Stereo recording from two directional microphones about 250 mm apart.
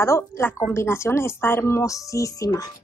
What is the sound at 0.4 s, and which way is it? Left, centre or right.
A woman's voice, centre.